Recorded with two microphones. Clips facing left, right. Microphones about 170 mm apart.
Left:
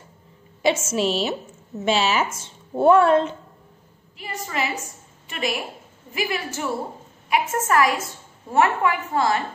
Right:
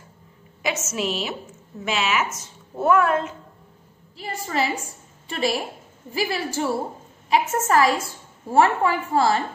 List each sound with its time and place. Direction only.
0.6 s a woman's voice: 30° left (ahead or behind)
4.2 s a woman's voice: 35° right (ahead or behind)